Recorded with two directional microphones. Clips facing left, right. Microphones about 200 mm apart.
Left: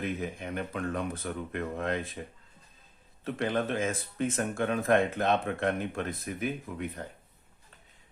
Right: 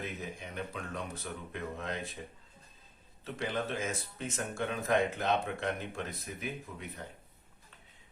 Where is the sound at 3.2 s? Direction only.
55° left (ahead or behind).